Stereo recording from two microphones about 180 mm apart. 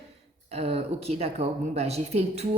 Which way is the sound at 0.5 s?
35° right (ahead or behind).